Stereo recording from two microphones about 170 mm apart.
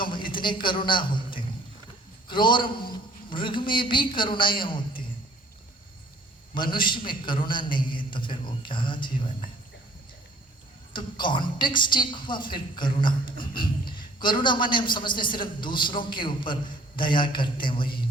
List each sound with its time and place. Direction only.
0.4 s a man's voice: 30° left (ahead or behind)
6.5 s a woman's voice: 30° left (ahead or behind)
10.9 s a woman's voice: 30° left (ahead or behind)